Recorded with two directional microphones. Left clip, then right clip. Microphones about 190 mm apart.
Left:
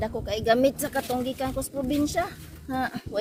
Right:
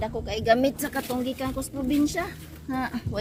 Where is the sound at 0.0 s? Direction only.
20° left (ahead or behind).